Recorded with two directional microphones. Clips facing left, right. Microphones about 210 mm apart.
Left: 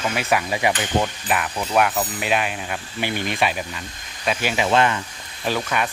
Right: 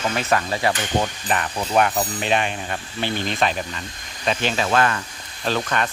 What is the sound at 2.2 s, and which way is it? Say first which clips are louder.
Speech: right 1 dB; 5° left (ahead or behind).